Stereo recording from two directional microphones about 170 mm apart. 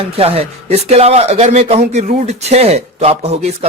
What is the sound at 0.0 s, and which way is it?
Speech, 35° right (ahead or behind).